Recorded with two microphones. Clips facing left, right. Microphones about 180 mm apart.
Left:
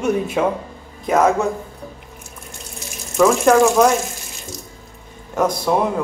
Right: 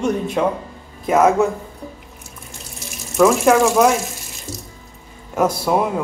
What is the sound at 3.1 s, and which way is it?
Speech, centre (ahead or behind).